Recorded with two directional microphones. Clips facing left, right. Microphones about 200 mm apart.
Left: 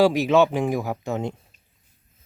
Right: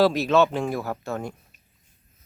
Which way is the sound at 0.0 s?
15° left (ahead or behind).